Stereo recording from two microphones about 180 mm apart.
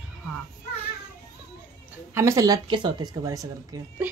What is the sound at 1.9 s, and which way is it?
Speech, 15° right (ahead or behind).